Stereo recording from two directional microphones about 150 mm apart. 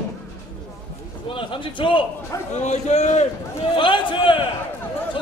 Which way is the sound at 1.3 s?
35° left (ahead or behind).